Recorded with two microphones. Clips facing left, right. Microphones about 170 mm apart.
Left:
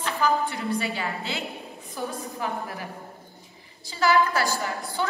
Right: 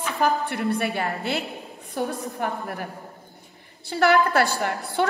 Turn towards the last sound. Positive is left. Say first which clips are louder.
# right 5 dB
turn(degrees=-65)  # may be behind; listen again after turning